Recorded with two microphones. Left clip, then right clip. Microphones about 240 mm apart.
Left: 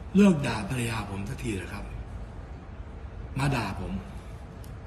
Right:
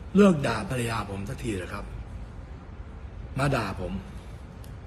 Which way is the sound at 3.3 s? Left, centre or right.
Centre.